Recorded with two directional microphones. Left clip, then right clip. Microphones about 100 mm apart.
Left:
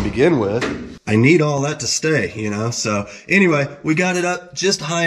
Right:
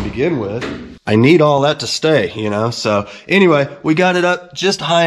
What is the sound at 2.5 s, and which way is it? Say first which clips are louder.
Speech: right 8 dB; 50° right (ahead or behind).